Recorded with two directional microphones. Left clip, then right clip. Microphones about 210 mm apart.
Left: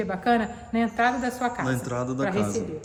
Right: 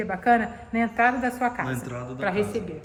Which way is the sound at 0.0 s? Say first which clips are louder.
Right 2 dB; 5° left (ahead or behind).